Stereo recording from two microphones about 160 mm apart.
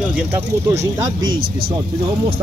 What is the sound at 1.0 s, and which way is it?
Speech, 25° right (ahead or behind).